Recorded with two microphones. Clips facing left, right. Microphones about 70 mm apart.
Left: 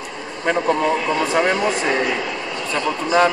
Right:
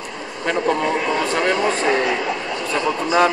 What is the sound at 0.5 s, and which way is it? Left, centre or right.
Speech, centre.